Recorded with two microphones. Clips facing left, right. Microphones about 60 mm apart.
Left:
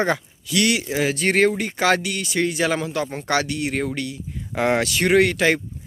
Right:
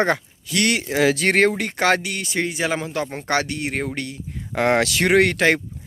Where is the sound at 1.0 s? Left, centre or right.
Right.